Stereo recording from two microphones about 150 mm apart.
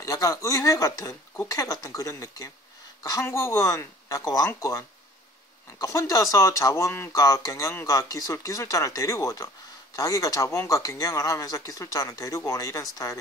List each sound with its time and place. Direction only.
0.0 s speech: 25° left (ahead or behind)